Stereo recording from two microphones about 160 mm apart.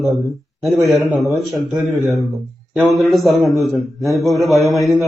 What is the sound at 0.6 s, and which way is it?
A man's voice, centre (ahead or behind).